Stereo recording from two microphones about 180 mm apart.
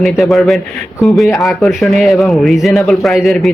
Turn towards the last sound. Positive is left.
turn(degrees=0)  # may be behind; listen again after turning